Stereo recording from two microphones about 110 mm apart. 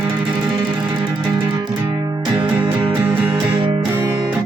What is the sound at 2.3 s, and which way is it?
Music, 40° right (ahead or behind).